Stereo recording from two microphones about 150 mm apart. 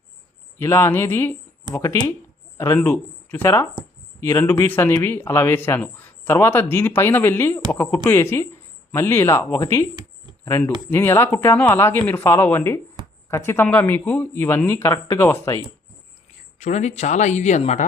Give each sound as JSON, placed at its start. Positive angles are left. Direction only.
{"t": 0.6, "sound": "speech", "side_deg": 15}
{"t": 16.6, "sound": "speech", "side_deg": 50}